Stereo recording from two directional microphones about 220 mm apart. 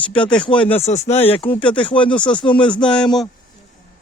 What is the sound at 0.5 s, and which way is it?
Speech, 5° left (ahead or behind).